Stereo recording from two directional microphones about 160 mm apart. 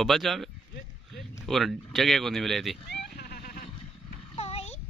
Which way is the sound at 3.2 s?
80° left.